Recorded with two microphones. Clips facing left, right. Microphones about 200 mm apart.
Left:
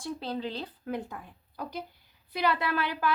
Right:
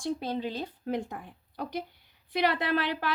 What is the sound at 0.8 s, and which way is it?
Speech, 25° right (ahead or behind).